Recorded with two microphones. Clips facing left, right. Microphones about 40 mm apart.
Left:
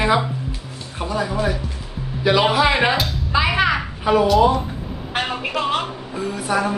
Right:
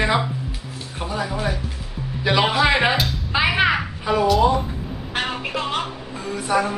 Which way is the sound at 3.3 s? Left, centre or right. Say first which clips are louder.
Left 1 dB; centre.